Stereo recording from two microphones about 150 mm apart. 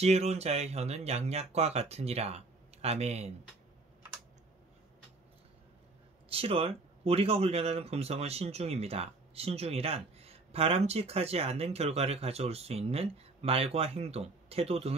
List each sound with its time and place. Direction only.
0.0 s speech: 45° right (ahead or behind)
6.2 s speech: 40° right (ahead or behind)